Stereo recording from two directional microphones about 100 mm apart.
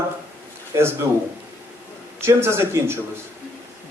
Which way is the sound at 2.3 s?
25° right (ahead or behind).